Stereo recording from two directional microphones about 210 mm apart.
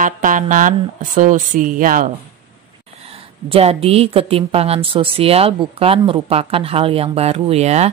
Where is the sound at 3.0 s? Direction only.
25° right (ahead or behind).